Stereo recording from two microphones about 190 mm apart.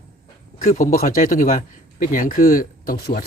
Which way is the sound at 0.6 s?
45° left (ahead or behind).